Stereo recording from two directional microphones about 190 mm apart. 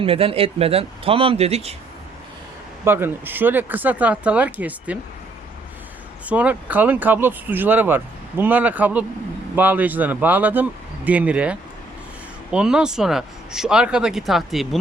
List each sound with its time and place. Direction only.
0.0 s speech: 30° right (ahead or behind)
2.8 s speech: 10° right (ahead or behind)
6.2 s speech: 10° right (ahead or behind)